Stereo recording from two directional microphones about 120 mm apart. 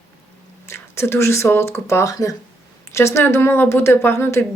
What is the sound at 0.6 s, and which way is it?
A woman's voice, 20° left (ahead or behind).